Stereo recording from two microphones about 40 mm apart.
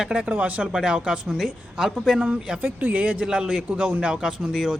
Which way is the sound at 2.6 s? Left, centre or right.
Right.